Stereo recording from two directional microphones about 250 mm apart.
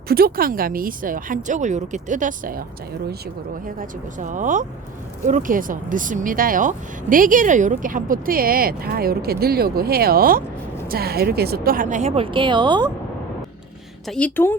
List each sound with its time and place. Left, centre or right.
0.1 s speech: right
3.8 s speech: right
14.1 s speech: centre